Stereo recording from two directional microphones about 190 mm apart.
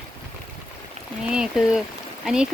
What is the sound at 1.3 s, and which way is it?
A woman's voice, 5° right (ahead or behind).